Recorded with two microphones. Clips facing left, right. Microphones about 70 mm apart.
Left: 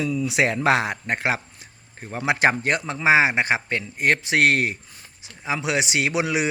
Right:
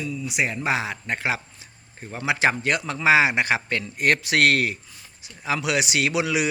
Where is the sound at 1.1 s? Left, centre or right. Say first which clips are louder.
Left 1 dB; left.